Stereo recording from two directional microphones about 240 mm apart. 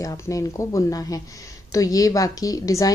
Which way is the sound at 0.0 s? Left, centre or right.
Centre.